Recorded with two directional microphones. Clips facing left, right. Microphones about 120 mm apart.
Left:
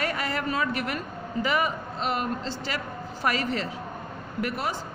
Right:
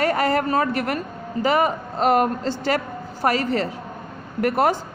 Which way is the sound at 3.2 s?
40° right (ahead or behind).